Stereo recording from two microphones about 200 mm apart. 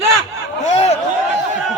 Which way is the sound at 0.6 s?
30° left (ahead or behind).